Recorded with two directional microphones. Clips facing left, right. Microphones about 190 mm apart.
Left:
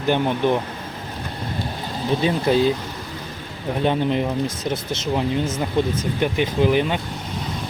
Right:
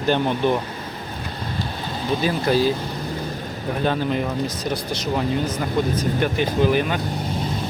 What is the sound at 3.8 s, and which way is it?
Speech, 20° left (ahead or behind).